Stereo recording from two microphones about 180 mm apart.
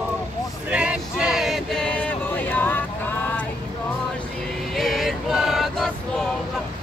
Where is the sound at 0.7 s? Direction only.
5° right (ahead or behind); by 3.4 s 10° left (ahead or behind).